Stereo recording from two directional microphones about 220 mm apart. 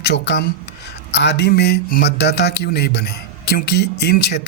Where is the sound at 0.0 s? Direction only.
50° left (ahead or behind).